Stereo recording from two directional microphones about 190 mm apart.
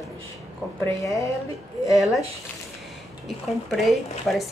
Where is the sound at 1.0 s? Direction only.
15° left (ahead or behind).